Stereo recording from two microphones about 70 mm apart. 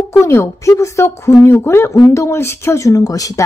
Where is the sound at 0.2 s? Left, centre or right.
Left.